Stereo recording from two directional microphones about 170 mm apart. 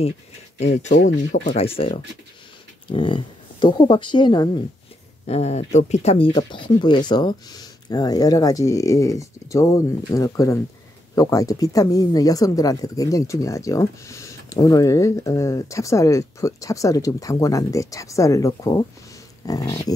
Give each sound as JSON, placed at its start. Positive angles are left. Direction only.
{"t": 0.9, "sound": "speech", "side_deg": 90}
{"t": 1.8, "sound": "speech", "side_deg": 35}
{"t": 5.2, "sound": "speech", "side_deg": 40}